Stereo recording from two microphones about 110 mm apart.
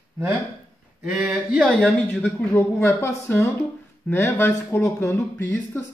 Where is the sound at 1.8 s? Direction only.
10° left (ahead or behind).